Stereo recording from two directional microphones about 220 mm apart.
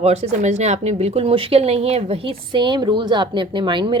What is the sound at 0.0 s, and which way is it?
A woman's voice, 30° right (ahead or behind).